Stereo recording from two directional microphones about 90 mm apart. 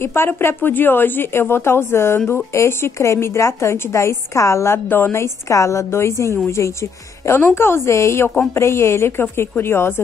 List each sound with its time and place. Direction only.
0.0 s a woman's voice: 25° left (ahead or behind)
4.7 s a woman's voice: 25° left (ahead or behind)